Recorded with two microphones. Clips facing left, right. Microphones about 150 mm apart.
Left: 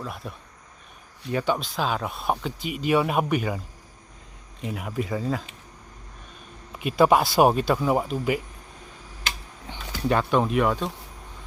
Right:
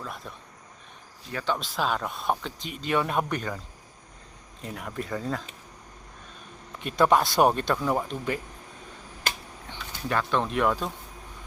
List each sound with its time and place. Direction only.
0.0 s speech: centre (ahead or behind)
1.3 s speech: 20° left (ahead or behind)
1.5 s speech: centre (ahead or behind)
4.6 s speech: 5° left (ahead or behind)
6.7 s speech: 10° left (ahead or behind)
10.1 s speech: 20° left (ahead or behind)
10.4 s speech: 5° left (ahead or behind)